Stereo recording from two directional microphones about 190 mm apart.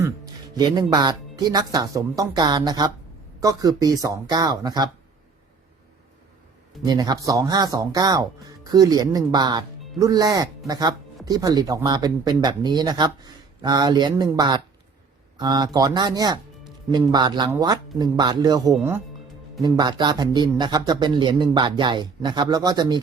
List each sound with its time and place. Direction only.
0.5 s speech: 20° right (ahead or behind)
6.8 s speech: 20° right (ahead or behind)
18.7 s speech: 10° right (ahead or behind)
19.6 s speech: 25° right (ahead or behind)